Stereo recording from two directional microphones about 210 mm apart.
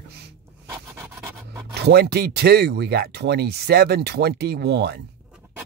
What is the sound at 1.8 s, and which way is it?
Speech, 50° right (ahead or behind).